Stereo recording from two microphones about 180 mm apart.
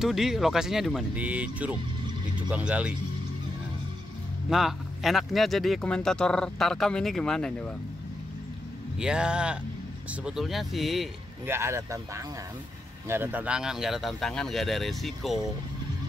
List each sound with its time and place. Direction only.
0.0 s speech: 5° right (ahead or behind)
4.5 s speech: centre (ahead or behind)
8.9 s speech: 5° right (ahead or behind)
11.4 s speech: 15° right (ahead or behind)